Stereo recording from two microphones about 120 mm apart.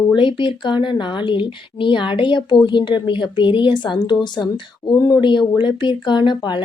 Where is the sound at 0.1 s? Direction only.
40° left (ahead or behind).